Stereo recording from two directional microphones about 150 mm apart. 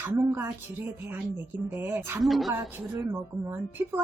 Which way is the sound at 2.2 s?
Centre (ahead or behind).